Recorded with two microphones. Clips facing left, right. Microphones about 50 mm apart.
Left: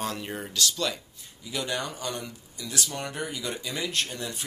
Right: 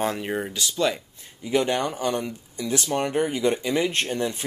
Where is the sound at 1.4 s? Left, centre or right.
Right.